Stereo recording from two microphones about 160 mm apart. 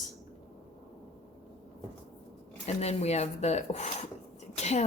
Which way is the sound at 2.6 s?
45° left (ahead or behind).